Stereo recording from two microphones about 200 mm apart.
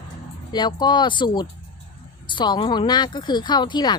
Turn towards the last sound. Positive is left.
turn(degrees=20)  # may be behind; listen again after turning